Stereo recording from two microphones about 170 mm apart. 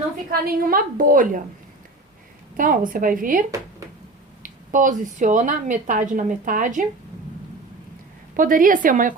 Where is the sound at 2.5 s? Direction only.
55° right (ahead or behind).